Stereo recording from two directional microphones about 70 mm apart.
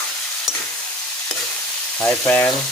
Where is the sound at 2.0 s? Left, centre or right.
Left.